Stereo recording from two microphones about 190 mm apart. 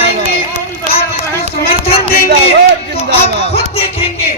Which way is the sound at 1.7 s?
30° left (ahead or behind).